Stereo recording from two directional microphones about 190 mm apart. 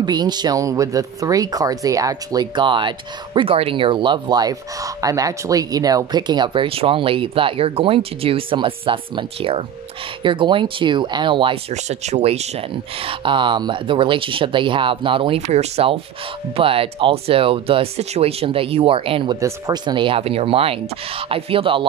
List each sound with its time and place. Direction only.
0.0 s speech: 20° right (ahead or behind)
11.7 s speech: 35° right (ahead or behind)